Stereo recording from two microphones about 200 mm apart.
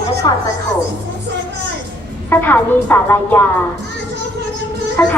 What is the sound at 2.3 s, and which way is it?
Speech, 10° left (ahead or behind).